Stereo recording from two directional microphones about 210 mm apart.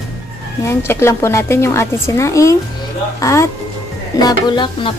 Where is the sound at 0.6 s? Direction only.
15° left (ahead or behind).